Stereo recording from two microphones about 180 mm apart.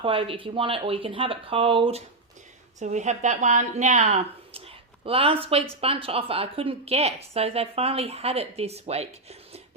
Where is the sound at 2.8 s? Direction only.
40° right (ahead or behind).